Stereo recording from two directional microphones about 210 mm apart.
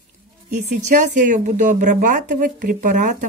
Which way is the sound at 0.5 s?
40° right (ahead or behind).